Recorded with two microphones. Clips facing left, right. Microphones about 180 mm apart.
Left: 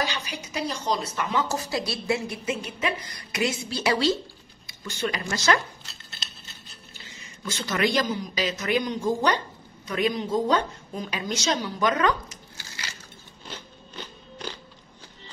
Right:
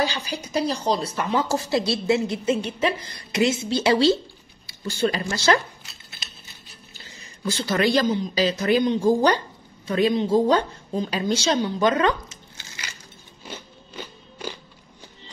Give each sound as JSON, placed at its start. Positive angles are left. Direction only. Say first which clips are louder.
{"t": 0.0, "sound": "speech", "louder": "right 4 dB", "side_deg": -30}
{"t": 7.1, "sound": "a woman's voice", "louder": "right 7 dB", "side_deg": -35}
{"t": 13.5, "sound": "biting", "louder": "right 3 dB", "side_deg": -10}